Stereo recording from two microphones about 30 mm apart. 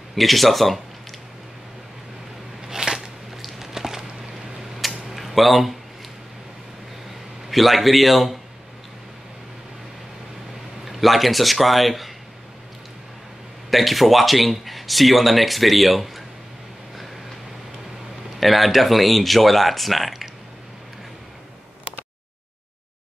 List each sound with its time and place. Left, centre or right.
0.1 s speech: centre
2.7 s biting: centre
3.4 s a sound: centre
7.4 s speech: centre
10.9 s speech: centre
13.7 s speech: centre
18.4 s speech: centre